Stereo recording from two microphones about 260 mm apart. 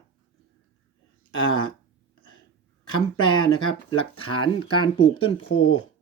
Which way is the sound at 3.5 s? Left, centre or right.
Left.